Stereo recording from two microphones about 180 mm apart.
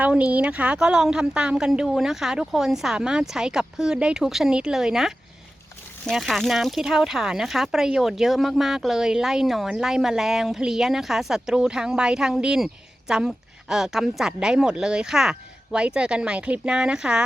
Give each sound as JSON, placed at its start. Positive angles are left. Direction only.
{"t": 0.0, "sound": "speech", "side_deg": -5}